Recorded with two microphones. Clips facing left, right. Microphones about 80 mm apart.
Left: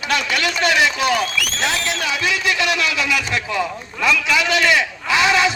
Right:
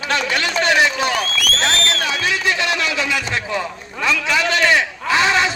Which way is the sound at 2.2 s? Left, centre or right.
Right.